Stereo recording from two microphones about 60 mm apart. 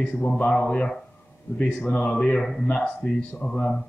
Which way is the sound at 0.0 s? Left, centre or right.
Left.